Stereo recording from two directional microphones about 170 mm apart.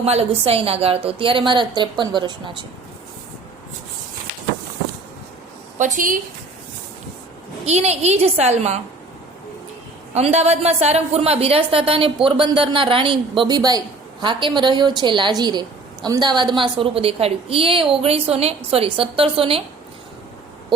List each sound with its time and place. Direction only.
0.0 s a woman's voice: 35° right (ahead or behind)
5.7 s a woman's voice: 45° right (ahead or behind)
7.6 s a woman's voice: 40° right (ahead or behind)
10.2 s a woman's voice: 40° right (ahead or behind)